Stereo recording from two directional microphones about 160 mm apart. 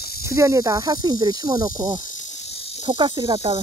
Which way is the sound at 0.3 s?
20° right (ahead or behind).